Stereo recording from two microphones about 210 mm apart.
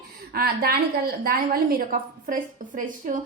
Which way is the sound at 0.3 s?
45° right (ahead or behind).